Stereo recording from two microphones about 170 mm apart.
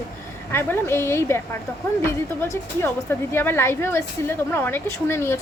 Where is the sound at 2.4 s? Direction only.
10° left (ahead or behind).